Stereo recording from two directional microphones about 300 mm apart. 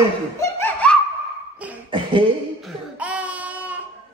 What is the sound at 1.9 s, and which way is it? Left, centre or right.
Beatboxing, centre.